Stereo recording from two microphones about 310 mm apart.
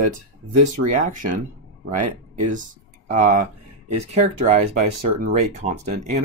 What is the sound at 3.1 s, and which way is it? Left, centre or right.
Speech, right.